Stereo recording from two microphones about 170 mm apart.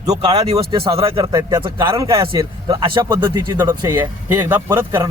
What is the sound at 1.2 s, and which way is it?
A man's voice, 25° right (ahead or behind).